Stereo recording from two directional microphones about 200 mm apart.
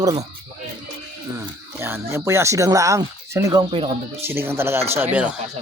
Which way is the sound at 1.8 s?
10° right (ahead or behind).